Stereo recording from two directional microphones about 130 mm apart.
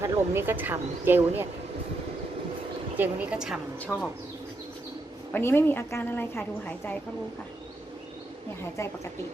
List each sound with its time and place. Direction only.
0.0 s speech: 20° right (ahead or behind)
3.0 s speech: 10° right (ahead or behind)
3.8 s a woman's voice: 5° left (ahead or behind)
5.3 s a woman's voice: 20° left (ahead or behind)
8.8 s a woman's voice: 20° left (ahead or behind)